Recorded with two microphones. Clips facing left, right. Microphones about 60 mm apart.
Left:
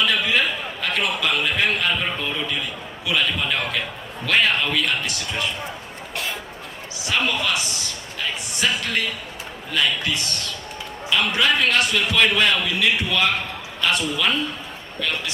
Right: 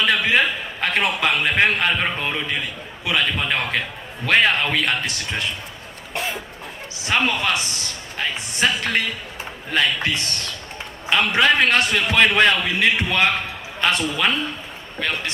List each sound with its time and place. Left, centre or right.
0.0 s a man's voice: right
6.1 s speech: right
7.0 s a man's voice: right